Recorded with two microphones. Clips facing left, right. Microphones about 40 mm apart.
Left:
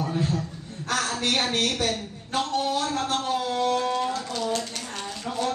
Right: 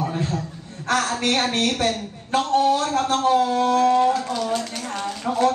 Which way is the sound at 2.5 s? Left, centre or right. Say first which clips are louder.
Right 9 dB; right.